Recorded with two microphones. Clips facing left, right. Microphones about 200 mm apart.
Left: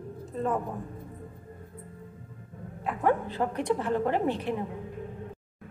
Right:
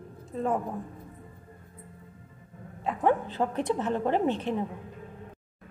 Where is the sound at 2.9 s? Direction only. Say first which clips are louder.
Right 1 dB; 20° right (ahead or behind).